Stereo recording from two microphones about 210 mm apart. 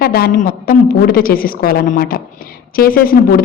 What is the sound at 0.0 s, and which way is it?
A woman's voice, 45° left (ahead or behind).